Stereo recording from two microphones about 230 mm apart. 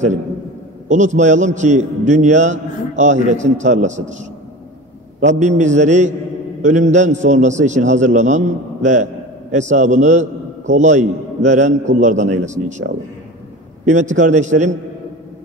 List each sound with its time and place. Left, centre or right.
0.8 s a man's voice: right
13.8 s a man's voice: right